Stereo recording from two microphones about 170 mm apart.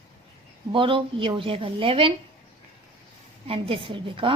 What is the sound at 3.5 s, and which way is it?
Speech, 35° right (ahead or behind).